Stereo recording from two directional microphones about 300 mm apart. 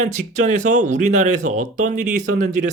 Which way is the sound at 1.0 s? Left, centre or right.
Right.